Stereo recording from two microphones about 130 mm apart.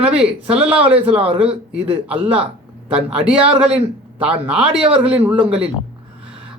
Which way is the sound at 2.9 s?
10° right (ahead or behind).